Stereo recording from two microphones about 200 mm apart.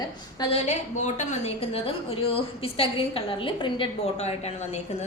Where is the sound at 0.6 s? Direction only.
35° left (ahead or behind).